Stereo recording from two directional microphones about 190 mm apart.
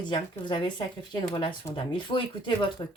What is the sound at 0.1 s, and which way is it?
A woman's voice, 25° left (ahead or behind).